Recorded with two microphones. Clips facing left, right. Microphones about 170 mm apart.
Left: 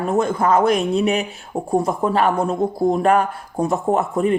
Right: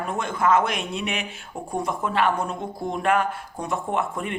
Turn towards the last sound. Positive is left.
turn(degrees=35)  # may be behind; listen again after turning